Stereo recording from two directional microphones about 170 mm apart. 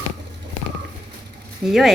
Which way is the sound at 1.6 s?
Centre (ahead or behind).